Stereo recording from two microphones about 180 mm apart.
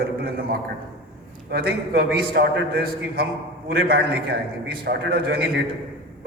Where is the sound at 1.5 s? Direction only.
60° right (ahead or behind).